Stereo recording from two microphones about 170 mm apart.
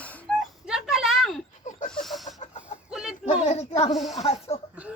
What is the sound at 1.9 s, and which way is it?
Chicken, centre (ahead or behind).